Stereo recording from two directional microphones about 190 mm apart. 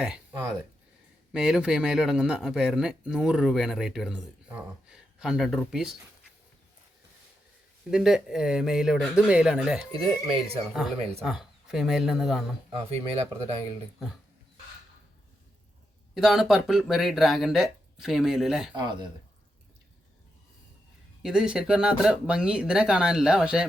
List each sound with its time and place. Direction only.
0.0 s a man's voice: 5° right (ahead or behind)
7.9 s a man's voice: 5° right (ahead or behind)
9.9 s speech: 30° right (ahead or behind)
11.2 s a man's voice: centre (ahead or behind)
12.9 s speech: 30° right (ahead or behind)
16.1 s a man's voice: centre (ahead or behind)
18.8 s speech: 25° right (ahead or behind)
21.2 s a man's voice: centre (ahead or behind)